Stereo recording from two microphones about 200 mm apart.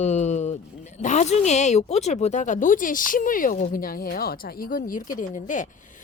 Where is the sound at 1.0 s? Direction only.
35° left (ahead or behind).